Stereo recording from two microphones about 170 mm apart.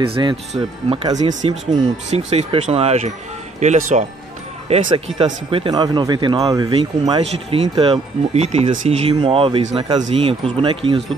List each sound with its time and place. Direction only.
0.0 s speech: 30° right (ahead or behind)
1.1 s speech: 40° right (ahead or behind)